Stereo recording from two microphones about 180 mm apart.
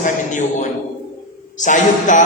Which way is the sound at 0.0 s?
45° left (ahead or behind).